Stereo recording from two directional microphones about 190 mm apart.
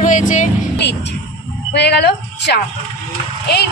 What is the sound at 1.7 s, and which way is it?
A woman's voice, 60° left (ahead or behind).